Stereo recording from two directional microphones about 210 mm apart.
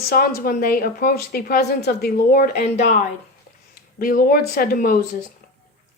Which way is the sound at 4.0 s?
45° left (ahead or behind).